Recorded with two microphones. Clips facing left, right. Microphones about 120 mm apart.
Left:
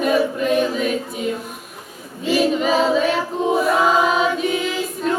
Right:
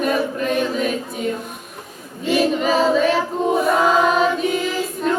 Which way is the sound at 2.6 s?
Centre (ahead or behind).